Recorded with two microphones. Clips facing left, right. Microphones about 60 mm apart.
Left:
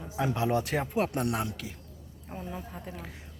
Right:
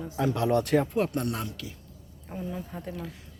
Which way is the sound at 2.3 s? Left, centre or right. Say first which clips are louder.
Right 3 dB; centre.